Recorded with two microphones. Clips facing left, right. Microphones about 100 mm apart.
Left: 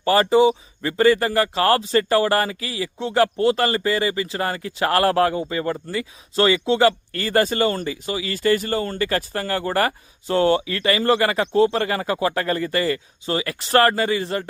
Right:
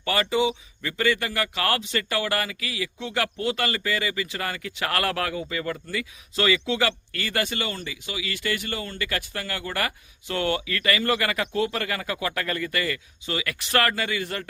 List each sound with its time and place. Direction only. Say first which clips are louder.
0.0 s speech: left 8 dB; 35° left (ahead or behind)